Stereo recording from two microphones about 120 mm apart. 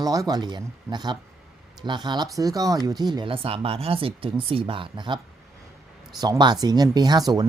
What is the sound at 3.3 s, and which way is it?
Speech, 50° right (ahead or behind).